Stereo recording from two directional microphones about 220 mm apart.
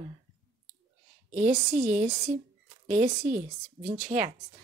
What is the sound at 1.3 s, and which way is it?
Speech, 35° right (ahead or behind).